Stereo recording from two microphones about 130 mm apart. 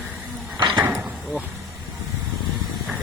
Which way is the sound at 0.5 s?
30° right (ahead or behind).